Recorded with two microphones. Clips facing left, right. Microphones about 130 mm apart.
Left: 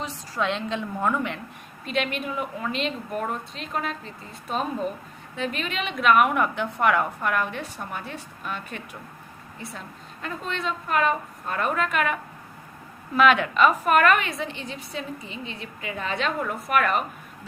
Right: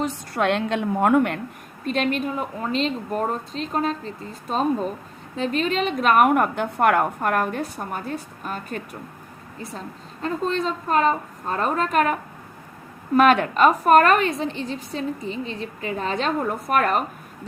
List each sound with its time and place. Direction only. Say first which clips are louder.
0.0 s a woman's voice: right 5 dB; 60° right (ahead or behind)
1.8 s a woman's voice: right 5 dB; 40° right (ahead or behind)